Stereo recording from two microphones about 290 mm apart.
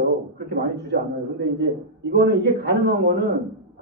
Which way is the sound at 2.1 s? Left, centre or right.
Right.